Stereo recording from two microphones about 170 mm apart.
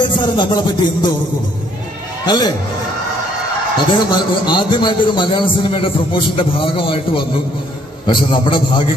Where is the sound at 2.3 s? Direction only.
25° left (ahead or behind).